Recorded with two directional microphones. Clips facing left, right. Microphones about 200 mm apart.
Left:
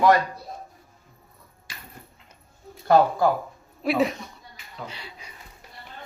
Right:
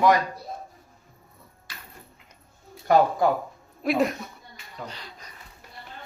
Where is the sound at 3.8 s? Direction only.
Centre (ahead or behind).